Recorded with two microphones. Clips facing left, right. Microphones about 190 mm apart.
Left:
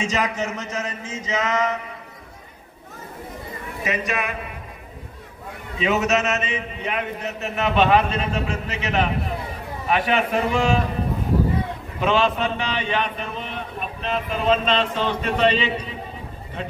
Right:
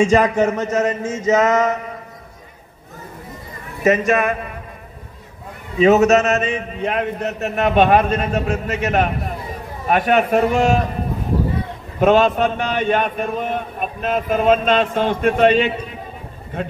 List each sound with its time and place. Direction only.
0.1 s a man's voice: 50° right (ahead or behind)
3.8 s a man's voice: 45° right (ahead or behind)
5.8 s a man's voice: 45° right (ahead or behind)
12.0 s a man's voice: 50° right (ahead or behind)